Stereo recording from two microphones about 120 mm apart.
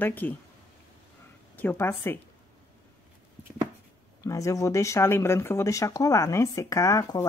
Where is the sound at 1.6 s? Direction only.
15° left (ahead or behind).